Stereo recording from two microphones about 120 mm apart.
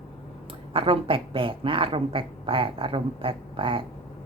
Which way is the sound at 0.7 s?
50° right (ahead or behind).